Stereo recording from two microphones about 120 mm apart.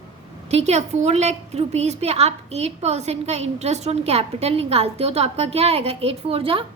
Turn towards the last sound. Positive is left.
turn(degrees=-50)  # may be behind; listen again after turning